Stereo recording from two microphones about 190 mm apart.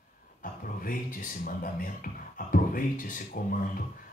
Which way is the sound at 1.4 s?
50° left (ahead or behind).